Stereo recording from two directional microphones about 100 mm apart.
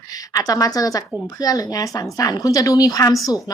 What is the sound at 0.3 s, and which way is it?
Speech, 35° left (ahead or behind).